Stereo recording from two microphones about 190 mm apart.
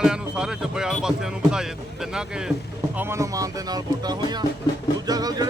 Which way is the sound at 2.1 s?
5° right (ahead or behind).